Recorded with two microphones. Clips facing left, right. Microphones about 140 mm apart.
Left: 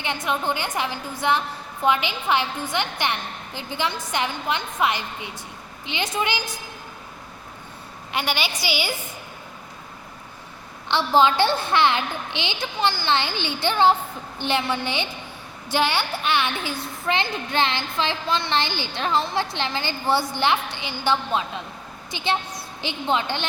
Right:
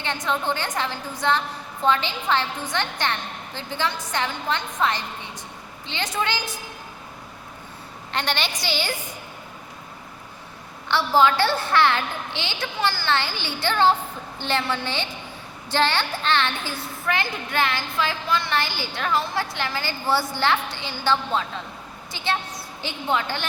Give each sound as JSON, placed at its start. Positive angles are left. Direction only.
{"t": 0.0, "sound": "a woman's voice", "side_deg": 15}
{"t": 8.1, "sound": "a woman's voice", "side_deg": 10}
{"t": 10.8, "sound": "a woman's voice", "side_deg": 20}
{"t": 17.1, "sound": "a woman's voice", "side_deg": 25}